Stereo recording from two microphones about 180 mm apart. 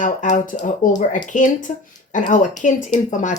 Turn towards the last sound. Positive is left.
turn(degrees=45)  # may be behind; listen again after turning